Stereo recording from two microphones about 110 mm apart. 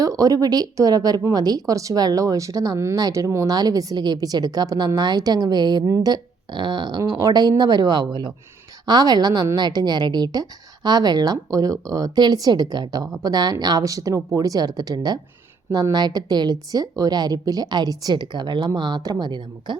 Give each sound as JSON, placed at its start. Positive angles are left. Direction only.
{"t": 0.0, "sound": "speech", "side_deg": -35}
{"t": 7.0, "sound": "speech", "side_deg": -30}